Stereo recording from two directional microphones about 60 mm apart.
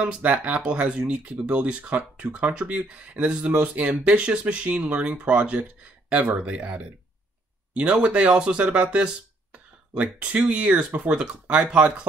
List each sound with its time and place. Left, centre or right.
0.0 s speech: right